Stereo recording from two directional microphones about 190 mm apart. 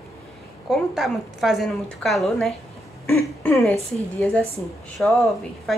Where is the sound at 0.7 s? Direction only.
Centre (ahead or behind).